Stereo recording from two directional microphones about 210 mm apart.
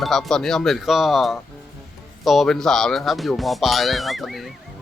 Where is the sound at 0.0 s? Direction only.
Centre (ahead or behind).